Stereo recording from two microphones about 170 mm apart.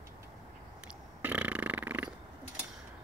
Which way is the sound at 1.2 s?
10° right (ahead or behind).